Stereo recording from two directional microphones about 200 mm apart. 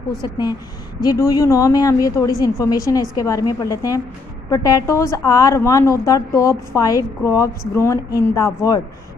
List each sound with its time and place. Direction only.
0.2 s a woman's voice: 20° left (ahead or behind)